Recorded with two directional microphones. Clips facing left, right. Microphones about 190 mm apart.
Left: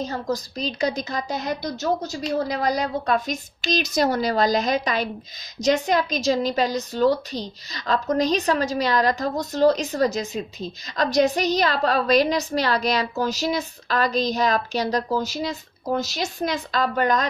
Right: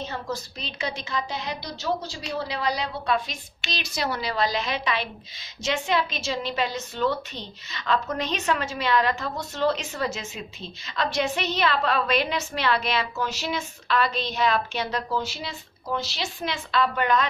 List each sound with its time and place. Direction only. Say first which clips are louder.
0.0 s a woman's voice: left 5 dB; 40° left (ahead or behind)